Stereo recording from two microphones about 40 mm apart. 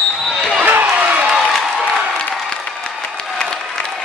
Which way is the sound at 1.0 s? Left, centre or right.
Right.